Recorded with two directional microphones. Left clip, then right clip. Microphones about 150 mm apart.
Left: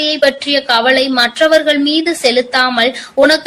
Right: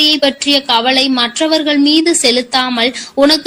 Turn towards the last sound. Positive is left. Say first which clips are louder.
# left 1 dB
turn(degrees=-40)  # may be behind; listen again after turning